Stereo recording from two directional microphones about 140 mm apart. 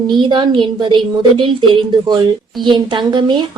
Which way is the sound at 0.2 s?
35° right (ahead or behind).